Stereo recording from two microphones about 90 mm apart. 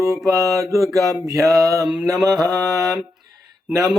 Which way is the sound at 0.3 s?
40° right (ahead or behind).